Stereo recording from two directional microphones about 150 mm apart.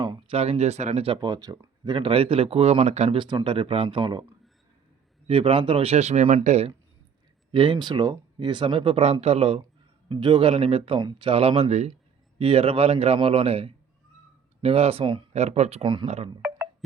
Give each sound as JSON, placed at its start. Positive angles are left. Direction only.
{"t": 0.0, "sound": "a sound", "side_deg": -30}
{"t": 0.3, "sound": "speech", "side_deg": -45}
{"t": 3.2, "sound": "speech", "side_deg": -30}
{"t": 5.3, "sound": "speech", "side_deg": -40}
{"t": 7.5, "sound": "speech", "side_deg": -35}
{"t": 15.3, "sound": "speech", "side_deg": -45}
{"t": 16.0, "sound": "speech", "side_deg": -45}